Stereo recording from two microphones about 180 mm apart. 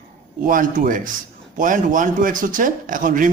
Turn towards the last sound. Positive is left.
turn(degrees=-50)  # may be behind; listen again after turning